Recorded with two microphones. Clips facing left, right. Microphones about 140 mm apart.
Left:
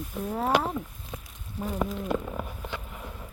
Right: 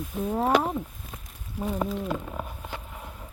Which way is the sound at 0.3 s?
15° right (ahead or behind).